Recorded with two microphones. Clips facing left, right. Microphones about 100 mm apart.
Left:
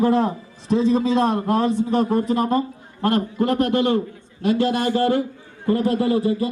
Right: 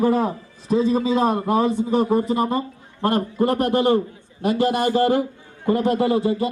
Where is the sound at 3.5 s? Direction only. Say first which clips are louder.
Even; 40° right (ahead or behind).